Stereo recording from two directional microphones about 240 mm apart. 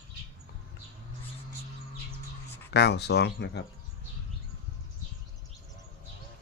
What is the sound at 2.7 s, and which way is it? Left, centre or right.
Speech, left.